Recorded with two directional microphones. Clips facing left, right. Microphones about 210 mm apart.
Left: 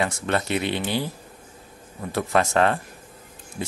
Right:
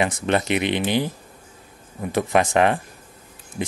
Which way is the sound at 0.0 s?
20° right (ahead or behind).